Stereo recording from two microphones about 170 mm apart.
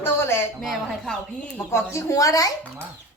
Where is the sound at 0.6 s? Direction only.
Centre (ahead or behind); by 2.5 s 20° left (ahead or behind).